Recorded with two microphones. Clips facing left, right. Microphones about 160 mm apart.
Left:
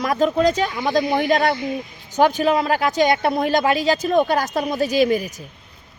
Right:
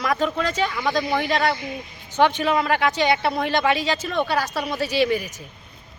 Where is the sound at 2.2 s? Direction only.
40° left (ahead or behind).